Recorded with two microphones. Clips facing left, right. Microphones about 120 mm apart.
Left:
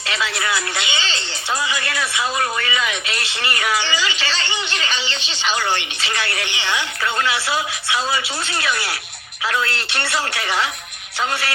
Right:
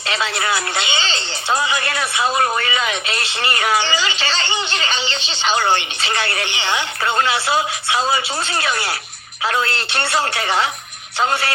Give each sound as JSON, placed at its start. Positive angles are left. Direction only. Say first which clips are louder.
{"t": 0.1, "sound": "speech", "louder": "right 2 dB", "side_deg": -35}